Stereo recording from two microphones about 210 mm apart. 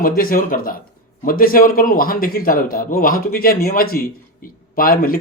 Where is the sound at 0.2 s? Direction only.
45° left (ahead or behind).